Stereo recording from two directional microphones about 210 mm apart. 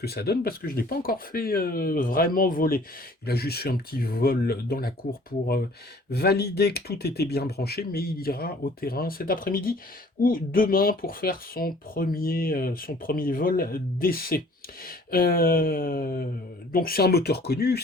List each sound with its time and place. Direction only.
0.0 s speech: 50° left (ahead or behind)
6.1 s speech: 50° left (ahead or behind)